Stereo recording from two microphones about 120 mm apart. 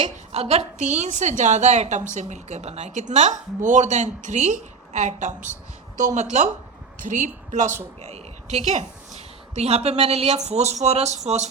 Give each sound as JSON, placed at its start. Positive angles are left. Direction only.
{"t": 0.0, "sound": "a woman's voice", "side_deg": -65}
{"t": 8.0, "sound": "a woman's voice", "side_deg": -65}